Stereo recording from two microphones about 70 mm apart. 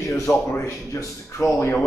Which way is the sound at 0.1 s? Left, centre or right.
Left.